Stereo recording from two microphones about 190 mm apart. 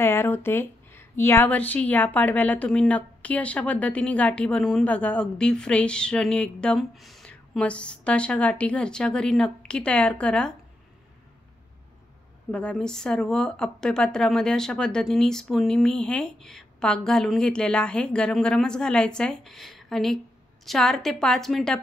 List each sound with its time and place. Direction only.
0.0 s a woman's voice: 10° left (ahead or behind)
12.4 s a woman's voice: 5° left (ahead or behind)